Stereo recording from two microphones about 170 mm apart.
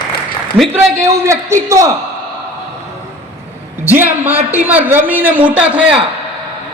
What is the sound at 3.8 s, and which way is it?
A woman's voice, 10° right (ahead or behind).